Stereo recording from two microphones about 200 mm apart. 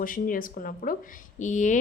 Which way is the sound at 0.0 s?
45° left (ahead or behind).